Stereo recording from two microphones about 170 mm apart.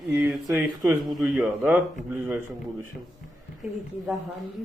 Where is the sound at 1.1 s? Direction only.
Centre (ahead or behind).